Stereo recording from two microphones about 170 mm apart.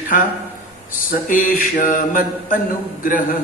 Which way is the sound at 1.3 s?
50° left (ahead or behind).